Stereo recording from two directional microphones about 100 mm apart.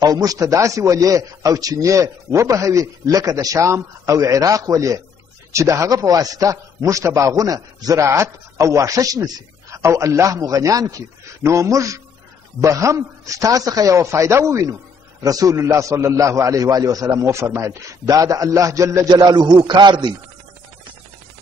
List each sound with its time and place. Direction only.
0.0 s a man's voice: 40° right (ahead or behind)